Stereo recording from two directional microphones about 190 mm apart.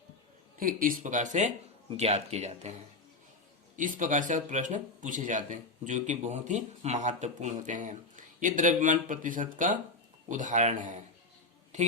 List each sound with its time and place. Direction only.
0.6 s speech: 50° right (ahead or behind)
3.8 s speech: 45° right (ahead or behind)